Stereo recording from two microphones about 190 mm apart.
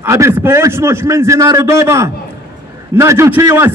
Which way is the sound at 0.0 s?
15° right (ahead or behind).